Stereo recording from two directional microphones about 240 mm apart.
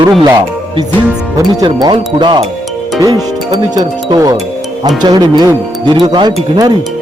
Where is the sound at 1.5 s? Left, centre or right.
Centre.